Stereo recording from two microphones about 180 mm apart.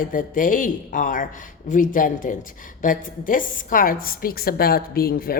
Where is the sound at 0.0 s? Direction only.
50° left (ahead or behind).